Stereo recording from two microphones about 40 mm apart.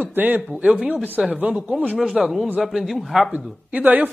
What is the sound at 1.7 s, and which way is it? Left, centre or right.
Speech, right.